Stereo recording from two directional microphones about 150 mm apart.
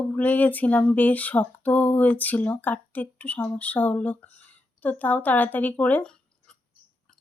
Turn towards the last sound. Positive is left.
turn(degrees=10)  # may be behind; listen again after turning